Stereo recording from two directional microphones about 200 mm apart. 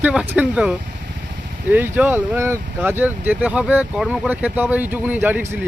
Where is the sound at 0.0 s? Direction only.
5° right (ahead or behind).